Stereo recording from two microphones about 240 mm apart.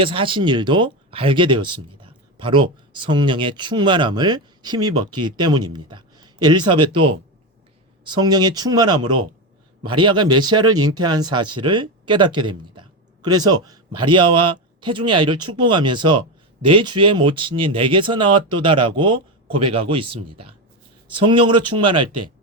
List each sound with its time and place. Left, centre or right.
0.0 s a man's voice: right